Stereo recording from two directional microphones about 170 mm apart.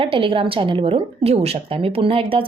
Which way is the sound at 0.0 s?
30° right (ahead or behind).